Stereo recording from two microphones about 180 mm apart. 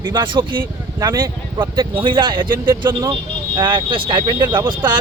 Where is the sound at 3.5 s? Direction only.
25° right (ahead or behind).